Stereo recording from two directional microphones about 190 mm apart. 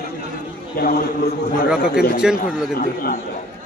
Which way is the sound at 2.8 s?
50° left (ahead or behind).